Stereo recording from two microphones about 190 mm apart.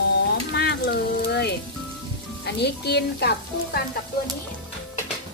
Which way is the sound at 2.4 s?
60° left (ahead or behind).